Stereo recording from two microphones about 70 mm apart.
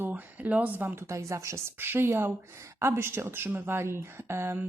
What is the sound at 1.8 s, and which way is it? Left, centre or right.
A woman's voice, right.